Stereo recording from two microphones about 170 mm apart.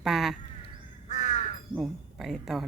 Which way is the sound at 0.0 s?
Centre (ahead or behind).